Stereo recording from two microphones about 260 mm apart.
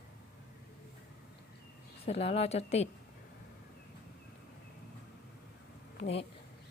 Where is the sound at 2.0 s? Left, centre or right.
Left.